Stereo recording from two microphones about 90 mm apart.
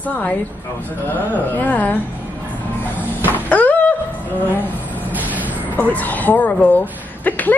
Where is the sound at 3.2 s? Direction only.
20° left (ahead or behind).